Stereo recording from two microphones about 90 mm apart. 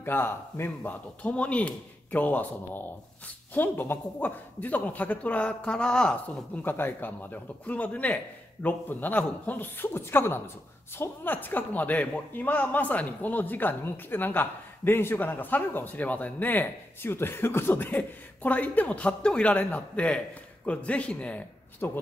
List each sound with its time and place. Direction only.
0.0 s a man's voice: 25° left (ahead or behind)
1.2 s a man's voice: 15° left (ahead or behind)